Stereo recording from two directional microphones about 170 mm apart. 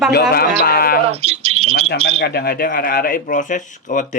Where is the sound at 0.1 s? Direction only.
70° left (ahead or behind).